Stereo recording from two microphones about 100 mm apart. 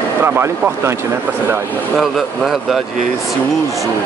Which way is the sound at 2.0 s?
Centre (ahead or behind).